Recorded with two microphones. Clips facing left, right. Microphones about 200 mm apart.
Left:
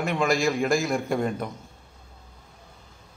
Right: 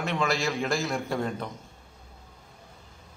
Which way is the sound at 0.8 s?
10° left (ahead or behind).